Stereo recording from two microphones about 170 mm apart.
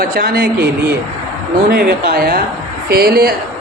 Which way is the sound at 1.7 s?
60° right (ahead or behind).